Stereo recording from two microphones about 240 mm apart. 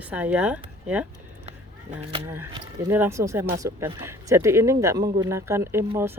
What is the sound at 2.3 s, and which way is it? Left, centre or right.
Speech, centre.